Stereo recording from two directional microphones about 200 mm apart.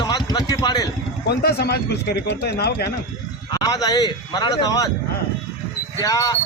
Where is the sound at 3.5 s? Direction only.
20° left (ahead or behind).